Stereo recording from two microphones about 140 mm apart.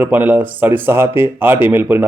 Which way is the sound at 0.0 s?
10° right (ahead or behind).